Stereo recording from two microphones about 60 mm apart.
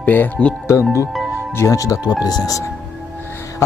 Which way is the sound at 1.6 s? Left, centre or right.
Left.